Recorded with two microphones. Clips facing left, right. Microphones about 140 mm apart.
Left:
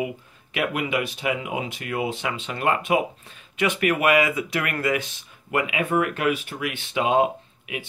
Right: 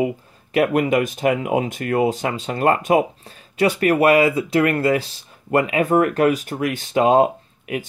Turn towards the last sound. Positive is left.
turn(degrees=-45)  # may be behind; listen again after turning